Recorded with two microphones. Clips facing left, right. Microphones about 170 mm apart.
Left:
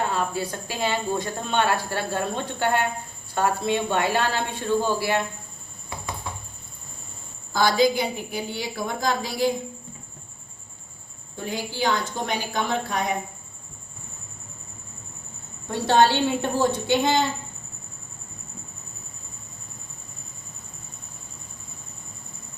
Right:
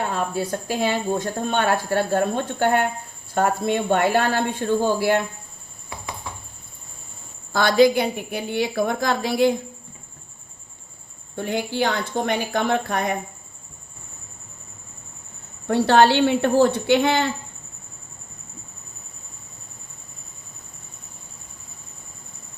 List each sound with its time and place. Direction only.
0.1 s speech: 50° right (ahead or behind)
7.5 s a woman's voice: 60° right (ahead or behind)
11.3 s a woman's voice: 60° right (ahead or behind)
15.6 s a woman's voice: 65° right (ahead or behind)